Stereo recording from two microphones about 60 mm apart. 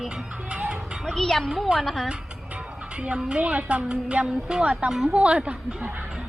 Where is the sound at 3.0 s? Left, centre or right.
Centre.